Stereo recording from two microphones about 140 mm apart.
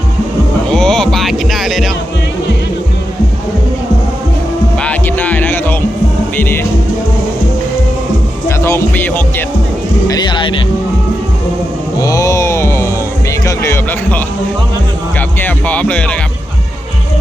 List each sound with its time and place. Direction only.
0.7 s music: 5° left (ahead or behind)
4.8 s music: 10° left (ahead or behind)
8.4 s music: 20° left (ahead or behind)
10.1 s music: 35° left (ahead or behind)
11.9 s music: 25° left (ahead or behind)
15.4 s speech: 10° left (ahead or behind)